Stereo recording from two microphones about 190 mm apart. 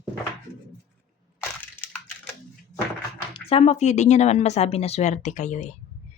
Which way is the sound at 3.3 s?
30° left (ahead or behind).